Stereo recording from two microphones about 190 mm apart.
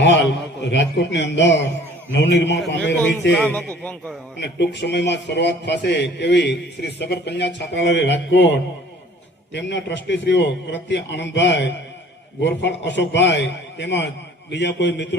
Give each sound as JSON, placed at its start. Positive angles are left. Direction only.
{"t": 0.7, "sound": "a man's voice", "side_deg": 70}
{"t": 2.7, "sound": "a man's voice", "side_deg": 5}
{"t": 4.4, "sound": "a man's voice", "side_deg": 60}